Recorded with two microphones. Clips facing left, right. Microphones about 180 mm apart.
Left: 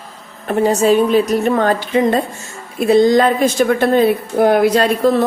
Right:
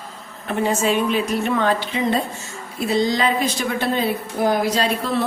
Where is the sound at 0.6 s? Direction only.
40° left (ahead or behind).